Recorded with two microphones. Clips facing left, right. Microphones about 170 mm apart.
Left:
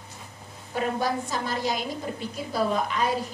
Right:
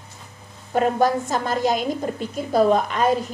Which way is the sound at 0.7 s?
50° right (ahead or behind).